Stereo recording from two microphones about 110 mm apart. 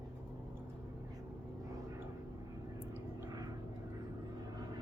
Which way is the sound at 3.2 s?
35° right (ahead or behind).